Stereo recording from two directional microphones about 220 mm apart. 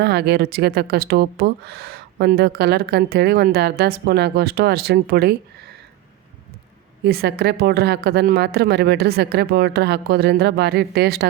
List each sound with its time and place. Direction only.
0.0 s speech: 50° right (ahead or behind)
7.0 s speech: 45° right (ahead or behind)